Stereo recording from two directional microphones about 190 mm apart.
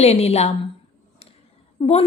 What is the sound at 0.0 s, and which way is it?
Speech, 35° left (ahead or behind).